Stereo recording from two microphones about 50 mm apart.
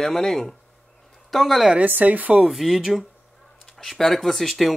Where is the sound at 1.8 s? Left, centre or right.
Right.